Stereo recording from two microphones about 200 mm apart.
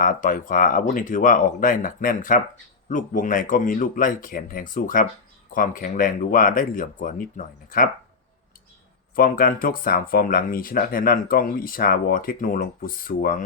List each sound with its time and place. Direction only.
0.0 s speech: 40° left (ahead or behind)
9.1 s speech: 45° left (ahead or behind)